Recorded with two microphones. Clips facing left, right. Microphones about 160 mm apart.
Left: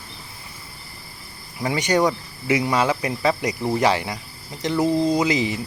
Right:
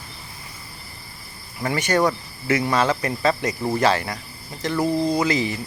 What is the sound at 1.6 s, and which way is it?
Speech, 15° left (ahead or behind).